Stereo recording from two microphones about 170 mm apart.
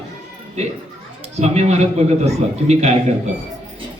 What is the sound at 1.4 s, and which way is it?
A man's voice, 40° right (ahead or behind).